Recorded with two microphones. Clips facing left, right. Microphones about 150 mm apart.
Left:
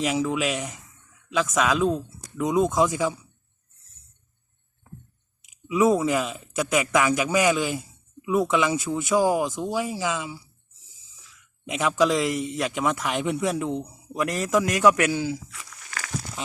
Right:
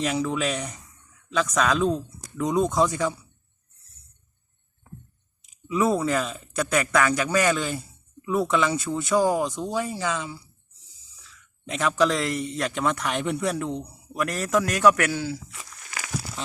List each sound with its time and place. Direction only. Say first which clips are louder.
0.0 s a man's voice: left 1 dB; 10° left (ahead or behind)
5.6 s a man's voice: left 2 dB; 15° left (ahead or behind)
11.6 s a man's voice: even; 15° left (ahead or behind)
15.4 s crumpling: even; 15° right (ahead or behind)